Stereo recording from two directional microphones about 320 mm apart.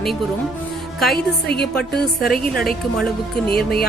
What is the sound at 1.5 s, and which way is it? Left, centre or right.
Speech, left.